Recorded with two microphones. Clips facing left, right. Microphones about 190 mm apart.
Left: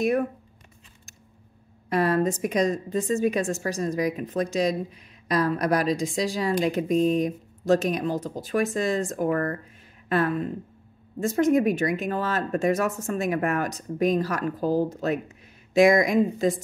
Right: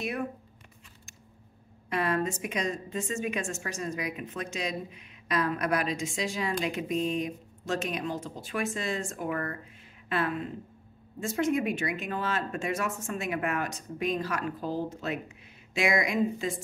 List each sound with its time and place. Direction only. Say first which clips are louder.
1.9 s speech: left 6 dB; 40° left (ahead or behind)